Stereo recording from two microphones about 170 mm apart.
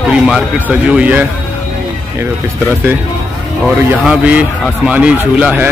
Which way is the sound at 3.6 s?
5° right (ahead or behind).